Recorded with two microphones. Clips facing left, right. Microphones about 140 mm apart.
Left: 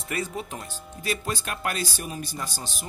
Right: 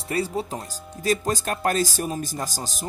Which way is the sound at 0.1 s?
35° right (ahead or behind).